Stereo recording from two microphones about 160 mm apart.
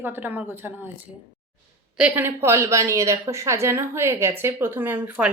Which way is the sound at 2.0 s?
10° right (ahead or behind).